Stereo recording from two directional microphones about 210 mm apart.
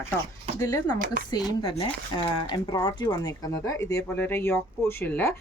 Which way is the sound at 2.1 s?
20° left (ahead or behind).